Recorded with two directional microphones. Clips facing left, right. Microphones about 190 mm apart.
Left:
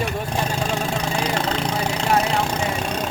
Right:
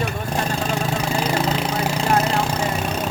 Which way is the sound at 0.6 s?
5° right (ahead or behind).